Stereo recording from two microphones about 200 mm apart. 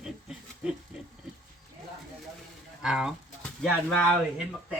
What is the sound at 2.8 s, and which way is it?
Speech, 5° right (ahead or behind).